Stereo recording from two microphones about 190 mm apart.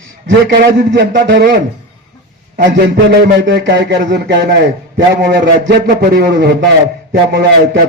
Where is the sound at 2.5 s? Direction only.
50° right (ahead or behind).